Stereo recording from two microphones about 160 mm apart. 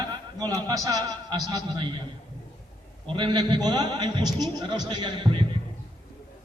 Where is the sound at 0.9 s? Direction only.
20° right (ahead or behind).